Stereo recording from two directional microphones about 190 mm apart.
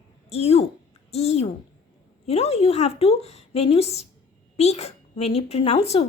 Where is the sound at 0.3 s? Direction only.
30° left (ahead or behind).